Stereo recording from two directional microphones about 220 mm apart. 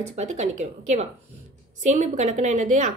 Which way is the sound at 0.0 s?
30° right (ahead or behind).